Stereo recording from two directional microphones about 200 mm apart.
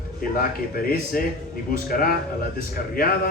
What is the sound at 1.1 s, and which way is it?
Speech, 45° left (ahead or behind).